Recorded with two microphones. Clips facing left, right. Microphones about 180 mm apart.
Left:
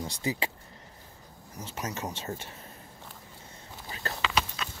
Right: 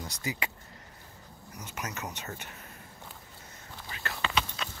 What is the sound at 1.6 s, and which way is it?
Speech, 30° left (ahead or behind).